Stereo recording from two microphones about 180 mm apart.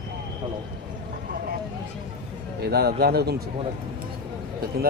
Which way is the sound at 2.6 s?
60° right (ahead or behind).